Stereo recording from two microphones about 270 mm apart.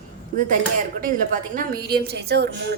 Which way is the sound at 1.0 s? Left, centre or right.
Right.